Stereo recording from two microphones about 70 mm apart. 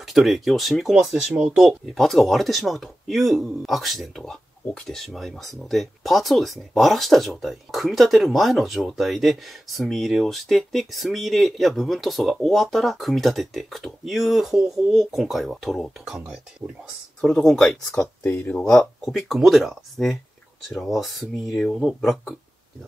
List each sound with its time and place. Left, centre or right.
0.0 s speech: centre
2.0 s speech: centre
17.2 s speech: centre
18.2 s speech: left
18.9 s speech: centre